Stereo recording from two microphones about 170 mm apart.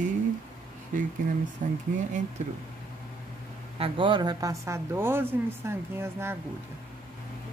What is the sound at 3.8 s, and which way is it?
Speech, 30° right (ahead or behind).